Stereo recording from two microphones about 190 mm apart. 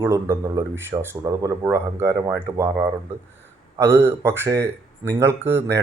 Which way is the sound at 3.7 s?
15° right (ahead or behind).